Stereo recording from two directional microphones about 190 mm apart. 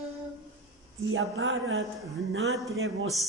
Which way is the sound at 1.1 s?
90° right.